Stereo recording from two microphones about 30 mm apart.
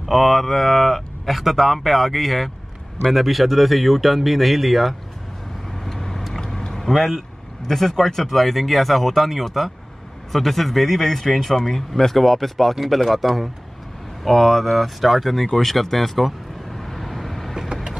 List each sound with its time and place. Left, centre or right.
0.0 s speech: centre
1.3 s speech: centre
5.7 s vehicle: centre
6.9 s speech: centre
14.8 s a sound: centre